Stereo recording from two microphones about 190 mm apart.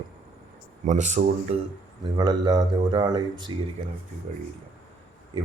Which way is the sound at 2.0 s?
20° right (ahead or behind).